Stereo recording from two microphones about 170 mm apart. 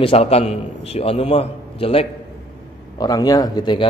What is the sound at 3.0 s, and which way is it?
Speech, 25° left (ahead or behind).